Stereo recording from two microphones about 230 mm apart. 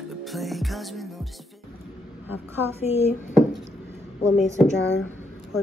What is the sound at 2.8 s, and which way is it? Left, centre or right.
Speech, left.